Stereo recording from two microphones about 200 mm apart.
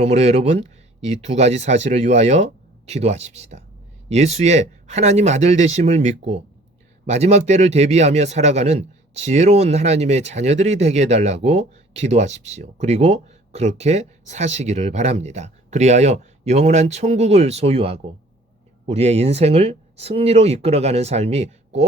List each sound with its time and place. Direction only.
0.0 s speech: 35° right (ahead or behind)